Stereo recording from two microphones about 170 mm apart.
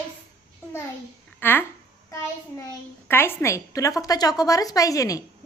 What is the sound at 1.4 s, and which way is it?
Speech, 10° left (ahead or behind).